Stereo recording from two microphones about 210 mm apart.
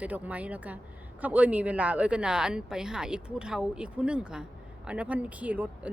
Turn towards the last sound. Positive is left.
turn(degrees=-5)  # may be behind; listen again after turning